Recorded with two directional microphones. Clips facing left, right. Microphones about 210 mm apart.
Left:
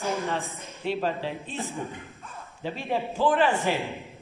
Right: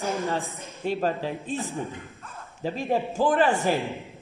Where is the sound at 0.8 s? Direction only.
45° right (ahead or behind).